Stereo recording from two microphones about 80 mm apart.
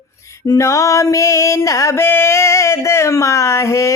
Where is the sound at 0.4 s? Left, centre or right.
Left.